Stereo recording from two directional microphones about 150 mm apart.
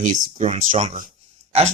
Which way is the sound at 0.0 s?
55° right (ahead or behind).